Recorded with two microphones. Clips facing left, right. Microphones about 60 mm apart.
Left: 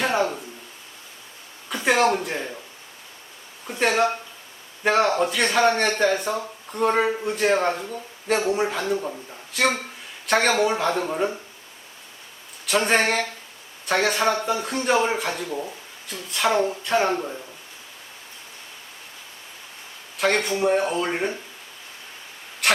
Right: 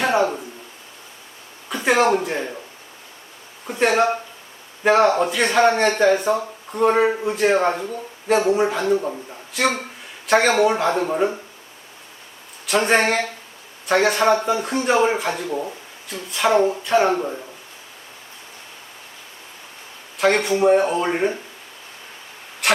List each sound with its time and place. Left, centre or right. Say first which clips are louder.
0.0 s a sound: right 4 dB; centre
1.7 s a sound: right 2 dB; centre
2.2 s speech: right 4 dB; centre
3.7 s speech: right 3 dB; centre
7.1 s speech: right 3 dB; centre
12.6 s speech: right 3 dB; centre
16.0 s speech: right 3 dB; centre
20.1 s speech: right 4 dB; centre
22.6 s a sound: right 2 dB; centre